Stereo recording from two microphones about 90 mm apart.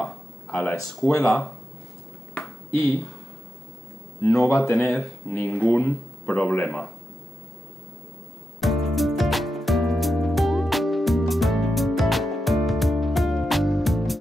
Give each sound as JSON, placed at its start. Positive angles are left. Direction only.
{"t": 0.0, "sound": "a sound", "side_deg": 20}
{"t": 0.7, "sound": "speech", "side_deg": 0}
{"t": 1.0, "sound": "speech", "side_deg": 30}
{"t": 2.7, "sound": "speech", "side_deg": 20}
{"t": 4.4, "sound": "speech", "side_deg": 25}
{"t": 4.8, "sound": "speech", "side_deg": 5}
{"t": 5.3, "sound": "speech", "side_deg": 20}
{"t": 8.5, "sound": "music", "side_deg": 0}